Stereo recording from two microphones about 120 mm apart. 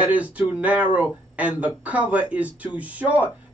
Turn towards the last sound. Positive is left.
turn(degrees=-10)  # may be behind; listen again after turning